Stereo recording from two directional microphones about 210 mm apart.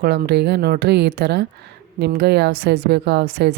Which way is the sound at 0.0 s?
50° right (ahead or behind).